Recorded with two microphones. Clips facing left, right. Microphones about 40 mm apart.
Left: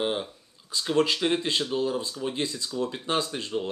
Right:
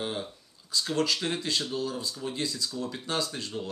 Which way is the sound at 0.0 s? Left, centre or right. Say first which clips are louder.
Left 5 dB; left.